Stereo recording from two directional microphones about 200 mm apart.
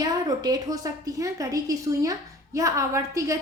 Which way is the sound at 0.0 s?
20° right (ahead or behind).